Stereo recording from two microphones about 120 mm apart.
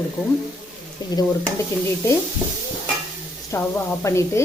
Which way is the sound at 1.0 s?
35° left (ahead or behind).